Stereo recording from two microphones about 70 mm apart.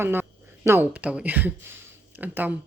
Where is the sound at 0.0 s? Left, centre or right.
Right.